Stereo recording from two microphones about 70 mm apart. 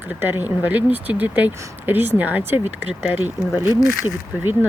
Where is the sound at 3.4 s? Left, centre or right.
Right.